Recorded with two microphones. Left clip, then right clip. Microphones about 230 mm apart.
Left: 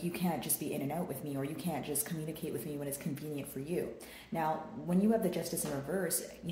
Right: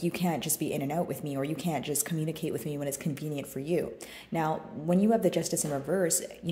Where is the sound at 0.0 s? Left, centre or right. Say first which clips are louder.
Right 6 dB; right.